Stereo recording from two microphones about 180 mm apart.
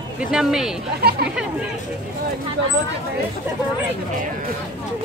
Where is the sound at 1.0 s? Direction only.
60° right (ahead or behind).